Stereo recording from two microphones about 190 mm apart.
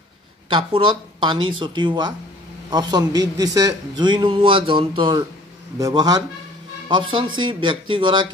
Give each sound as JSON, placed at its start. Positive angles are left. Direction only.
{"t": 0.5, "sound": "a man's voice", "side_deg": -25}